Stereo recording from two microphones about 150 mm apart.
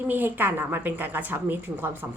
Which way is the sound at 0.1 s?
10° right (ahead or behind).